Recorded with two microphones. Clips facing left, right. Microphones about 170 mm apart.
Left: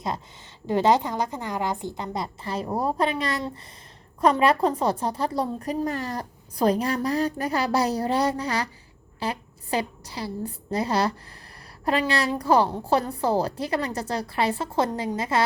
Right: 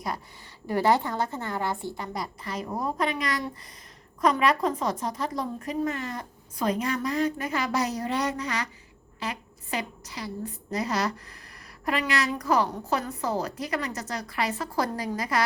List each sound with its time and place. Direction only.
0.7 s a woman's voice: 20° left (ahead or behind)